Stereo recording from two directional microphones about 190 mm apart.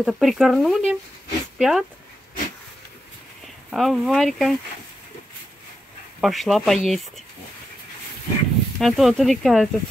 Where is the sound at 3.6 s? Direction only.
Centre (ahead or behind).